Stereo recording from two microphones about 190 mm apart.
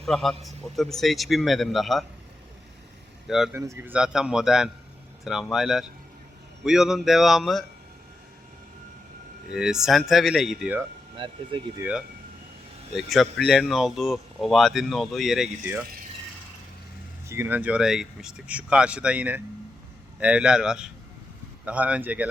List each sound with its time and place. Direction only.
0.0 s speech: centre (ahead or behind)
3.2 s speech: centre (ahead or behind)
3.5 s speech: 15° right (ahead or behind)
9.5 s speech: 5° right (ahead or behind)
11.2 s speech: 25° right (ahead or behind)
11.8 s speech: 5° right (ahead or behind)
17.2 s speech: 10° right (ahead or behind)